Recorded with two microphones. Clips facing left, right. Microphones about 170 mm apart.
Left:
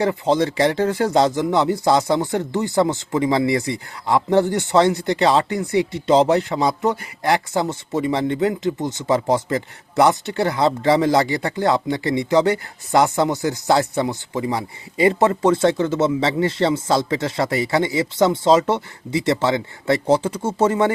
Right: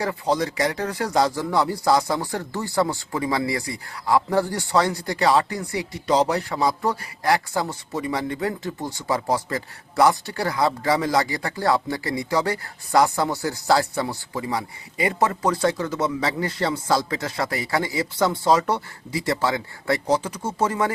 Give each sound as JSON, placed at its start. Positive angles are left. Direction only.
{"t": 0.0, "sound": "speech", "side_deg": 25}